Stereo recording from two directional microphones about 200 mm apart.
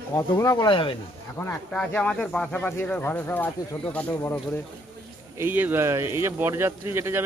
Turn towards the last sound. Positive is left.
turn(degrees=-10)  # may be behind; listen again after turning